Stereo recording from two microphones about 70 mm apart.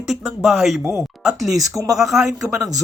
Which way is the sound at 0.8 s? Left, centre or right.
Right.